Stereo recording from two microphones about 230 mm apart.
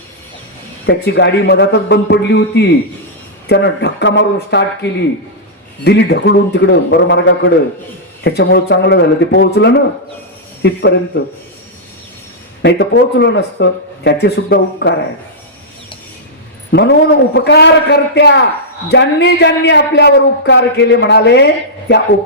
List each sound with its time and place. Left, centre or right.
0.9 s speech: left
12.6 s speech: left
16.7 s speech: left